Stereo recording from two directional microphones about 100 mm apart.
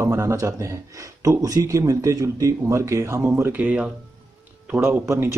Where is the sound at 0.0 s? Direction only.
30° right (ahead or behind).